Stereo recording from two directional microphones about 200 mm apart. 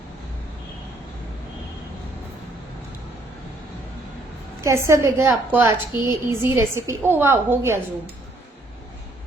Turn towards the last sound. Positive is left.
turn(degrees=-10)  # may be behind; listen again after turning